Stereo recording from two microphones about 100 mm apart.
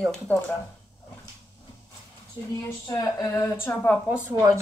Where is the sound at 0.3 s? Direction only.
15° left (ahead or behind).